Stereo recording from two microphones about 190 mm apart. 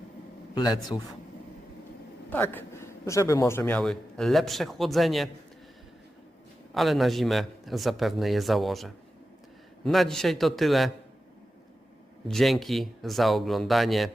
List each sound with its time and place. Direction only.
0.5 s speech: 25° left (ahead or behind)
2.3 s a man's voice: 10° left (ahead or behind)
6.7 s a man's voice: centre (ahead or behind)
12.3 s a man's voice: centre (ahead or behind)